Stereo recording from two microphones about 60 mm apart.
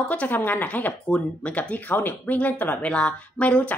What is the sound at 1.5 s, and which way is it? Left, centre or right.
Speech, left.